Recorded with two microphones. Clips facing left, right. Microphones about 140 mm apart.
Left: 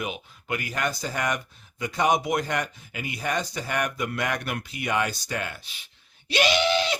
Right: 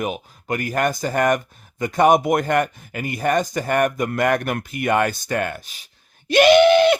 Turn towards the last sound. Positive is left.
turn(degrees=-55)  # may be behind; listen again after turning